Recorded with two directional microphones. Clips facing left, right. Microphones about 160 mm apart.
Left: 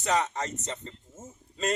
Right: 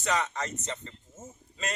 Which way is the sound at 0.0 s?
35° left (ahead or behind).